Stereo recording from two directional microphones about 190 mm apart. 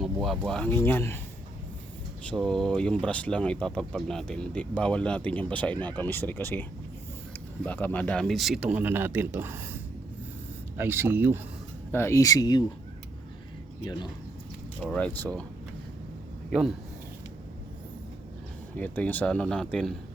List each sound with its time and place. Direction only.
0.0 s speech: centre (ahead or behind)
2.3 s speech: centre (ahead or behind)
10.8 s speech: 10° right (ahead or behind)
11.9 s speech: 10° left (ahead or behind)
14.8 s speech: 5° left (ahead or behind)
16.5 s speech: 5° right (ahead or behind)
18.8 s speech: 10° left (ahead or behind)